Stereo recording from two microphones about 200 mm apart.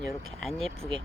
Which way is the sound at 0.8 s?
25° right (ahead or behind).